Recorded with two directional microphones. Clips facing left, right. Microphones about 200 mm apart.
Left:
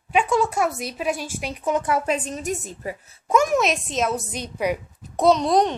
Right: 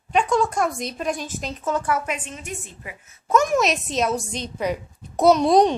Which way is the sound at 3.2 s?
10° left (ahead or behind).